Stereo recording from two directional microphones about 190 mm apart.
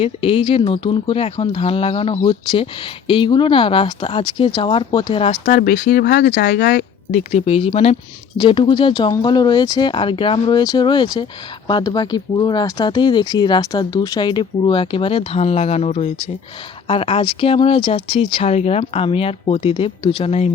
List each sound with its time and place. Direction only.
0.0 s speech: 30° left (ahead or behind)
5.5 s speech: 50° left (ahead or behind)
7.3 s speech: 35° left (ahead or behind)